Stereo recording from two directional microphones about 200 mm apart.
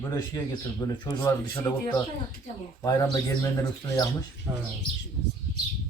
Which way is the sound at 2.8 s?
20° left (ahead or behind).